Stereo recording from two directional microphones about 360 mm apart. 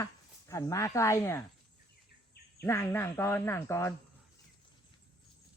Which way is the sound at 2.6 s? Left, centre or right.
Centre.